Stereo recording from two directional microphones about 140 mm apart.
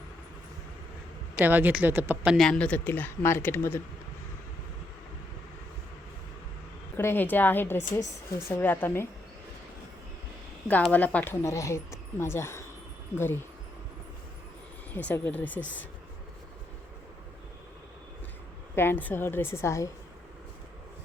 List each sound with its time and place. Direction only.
1.4 s a woman's voice: 15° right (ahead or behind)
2.5 s speech: 10° left (ahead or behind)
6.9 s speech: 15° left (ahead or behind)
10.9 s speech: 10° left (ahead or behind)
14.9 s speech: 10° left (ahead or behind)
18.8 s speech: 15° left (ahead or behind)